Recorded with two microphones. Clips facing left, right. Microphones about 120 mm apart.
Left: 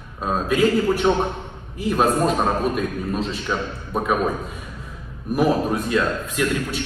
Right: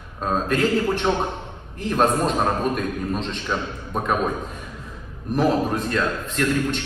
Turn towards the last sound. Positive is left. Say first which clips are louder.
# right 1 dB
turn(degrees=10)  # may be behind; listen again after turning